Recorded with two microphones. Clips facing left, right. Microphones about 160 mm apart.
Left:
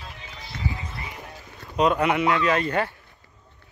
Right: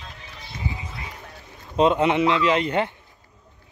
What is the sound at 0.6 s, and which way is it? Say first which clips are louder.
Run: left 1 dB; 20° right (ahead or behind).